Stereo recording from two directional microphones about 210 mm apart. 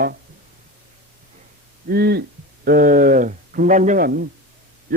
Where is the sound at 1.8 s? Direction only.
50° right (ahead or behind).